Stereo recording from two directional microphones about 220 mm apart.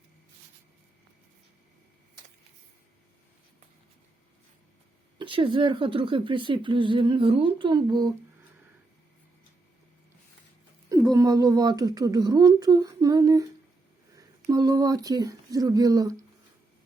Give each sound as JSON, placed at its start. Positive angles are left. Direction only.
{"t": 5.1, "sound": "speech", "side_deg": -25}
{"t": 10.8, "sound": "a woman's voice", "side_deg": -15}